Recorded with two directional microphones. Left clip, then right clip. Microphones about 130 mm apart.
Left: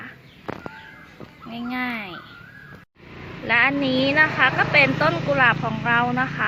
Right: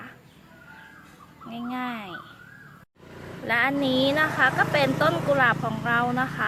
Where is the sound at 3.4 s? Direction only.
15° right (ahead or behind).